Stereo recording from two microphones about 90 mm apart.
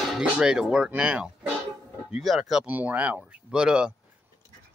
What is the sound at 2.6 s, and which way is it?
Speech, 20° right (ahead or behind).